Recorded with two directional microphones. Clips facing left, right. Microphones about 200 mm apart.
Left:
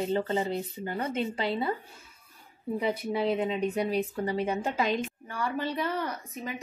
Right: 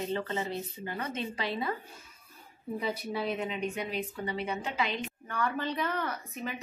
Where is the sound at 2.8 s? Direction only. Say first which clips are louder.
Left 5 dB; 15° left (ahead or behind).